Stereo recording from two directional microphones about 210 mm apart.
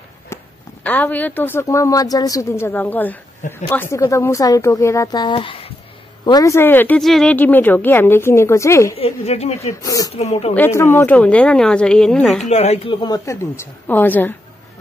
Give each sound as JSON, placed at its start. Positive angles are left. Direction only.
{"t": 0.3, "sound": "a sound", "side_deg": 15}
{"t": 0.8, "sound": "a woman's voice", "side_deg": 10}
{"t": 8.9, "sound": "speech", "side_deg": 30}
{"t": 9.8, "sound": "a woman's voice", "side_deg": 15}
{"t": 10.1, "sound": "speech", "side_deg": 30}
{"t": 10.5, "sound": "a woman's voice", "side_deg": 10}
{"t": 12.4, "sound": "a woman's voice", "side_deg": 30}